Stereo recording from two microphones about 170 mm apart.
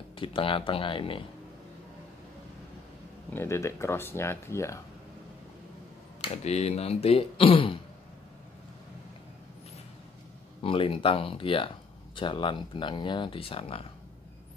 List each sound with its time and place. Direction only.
0.2 s speech: 30° left (ahead or behind)
3.3 s speech: 15° left (ahead or behind)
6.2 s speech: 40° left (ahead or behind)
10.6 s speech: 30° left (ahead or behind)